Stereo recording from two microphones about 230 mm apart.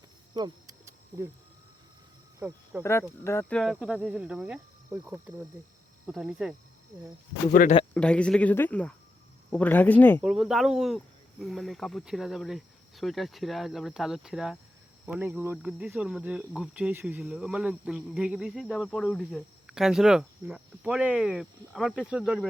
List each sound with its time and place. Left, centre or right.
0.3 s a sound: centre
2.4 s speech: centre
2.8 s speech: centre
7.5 s speech: left
7.9 s speech: centre